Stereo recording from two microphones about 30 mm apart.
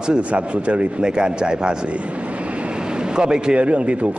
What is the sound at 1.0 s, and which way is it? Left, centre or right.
Speech, right.